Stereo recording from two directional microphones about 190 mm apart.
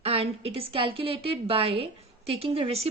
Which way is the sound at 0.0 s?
30° right (ahead or behind).